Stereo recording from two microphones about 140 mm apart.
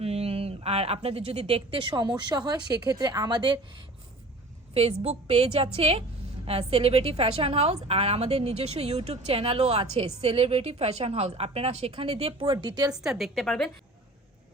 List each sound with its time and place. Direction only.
0.0 s speech: 45° right (ahead or behind)
4.7 s a woman's voice: 45° right (ahead or behind); by 12.9 s 30° right (ahead or behind)
12.9 s a woman's voice: 5° right (ahead or behind)